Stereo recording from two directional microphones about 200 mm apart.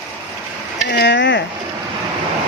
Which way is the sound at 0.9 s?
60° left (ahead or behind).